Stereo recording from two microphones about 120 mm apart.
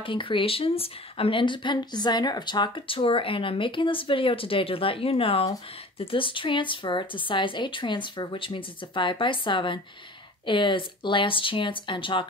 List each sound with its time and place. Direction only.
0.0 s speech: 45° left (ahead or behind)